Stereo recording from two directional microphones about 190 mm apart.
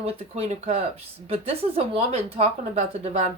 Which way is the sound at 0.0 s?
30° right (ahead or behind).